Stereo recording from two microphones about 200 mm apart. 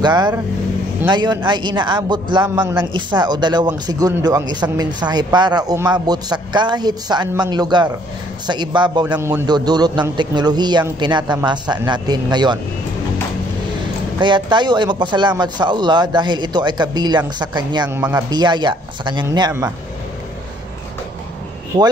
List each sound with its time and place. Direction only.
0.0 s speech: 20° right (ahead or behind)
14.2 s speech: 25° right (ahead or behind)
17.8 s speech: 10° right (ahead or behind)
18.3 s speech: 20° right (ahead or behind)